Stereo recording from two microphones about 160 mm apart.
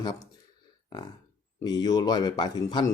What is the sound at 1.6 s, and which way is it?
A man's voice, 25° left (ahead or behind).